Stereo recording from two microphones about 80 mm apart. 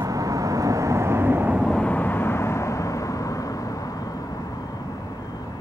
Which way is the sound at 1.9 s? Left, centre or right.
Left.